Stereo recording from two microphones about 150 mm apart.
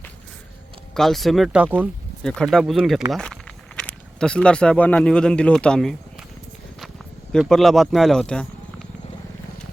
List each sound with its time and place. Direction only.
0.9 s speech: centre (ahead or behind)
7.3 s speech: centre (ahead or behind)